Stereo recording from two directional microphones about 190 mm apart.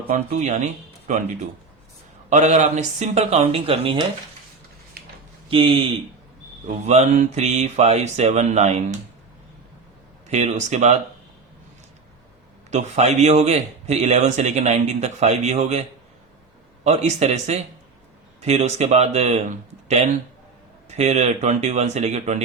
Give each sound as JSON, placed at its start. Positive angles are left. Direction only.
{"t": 0.1, "sound": "a man's voice", "side_deg": -40}
{"t": 5.5, "sound": "a man's voice", "side_deg": -30}
{"t": 10.2, "sound": "a man's voice", "side_deg": -35}
{"t": 12.7, "sound": "a man's voice", "side_deg": -40}
{"t": 16.8, "sound": "a man's voice", "side_deg": -35}